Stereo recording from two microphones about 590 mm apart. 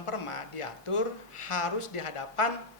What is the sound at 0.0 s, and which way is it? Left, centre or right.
Speech, left.